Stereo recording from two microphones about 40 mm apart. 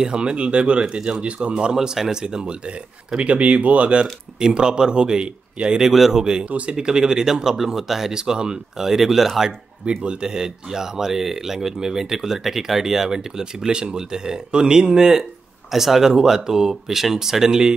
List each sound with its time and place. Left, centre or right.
0.0 s a man's voice: right
3.3 s speech: right
4.4 s a man's voice: right
5.9 s speech: centre
6.5 s speech: right; by 8.1 s centre
8.1 s a man's voice: centre
8.7 s speech: centre
9.8 s speech: right